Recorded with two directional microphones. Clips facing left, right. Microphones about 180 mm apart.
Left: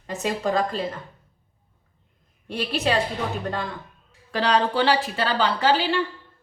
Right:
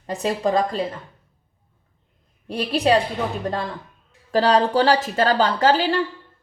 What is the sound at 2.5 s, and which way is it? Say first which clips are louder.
A woman's voice: right 5 dB; 35° right (ahead or behind).